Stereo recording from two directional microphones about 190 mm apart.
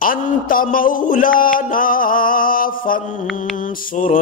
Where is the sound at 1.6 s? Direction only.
45° left (ahead or behind).